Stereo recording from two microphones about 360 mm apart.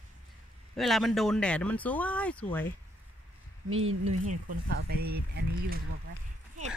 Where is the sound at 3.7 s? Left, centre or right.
Right.